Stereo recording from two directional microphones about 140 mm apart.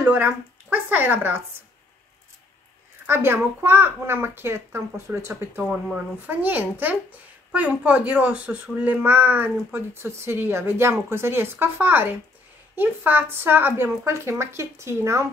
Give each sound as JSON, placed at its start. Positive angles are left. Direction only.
{"t": 0.0, "sound": "speech", "side_deg": -15}
{"t": 3.1, "sound": "speech", "side_deg": -15}
{"t": 5.6, "sound": "speech", "side_deg": -5}